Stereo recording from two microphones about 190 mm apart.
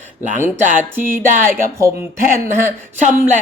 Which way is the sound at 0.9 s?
10° right (ahead or behind).